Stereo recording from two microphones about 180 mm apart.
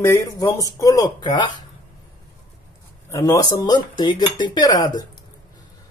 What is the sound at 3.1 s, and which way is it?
Speech, 15° left (ahead or behind).